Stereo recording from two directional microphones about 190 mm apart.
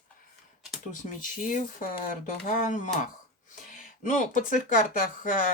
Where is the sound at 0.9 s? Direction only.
40° left (ahead or behind).